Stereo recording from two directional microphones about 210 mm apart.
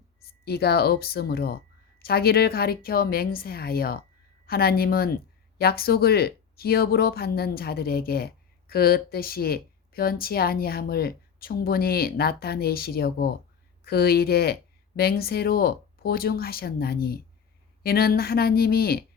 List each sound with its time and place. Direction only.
0.4 s speech: 50° left (ahead or behind)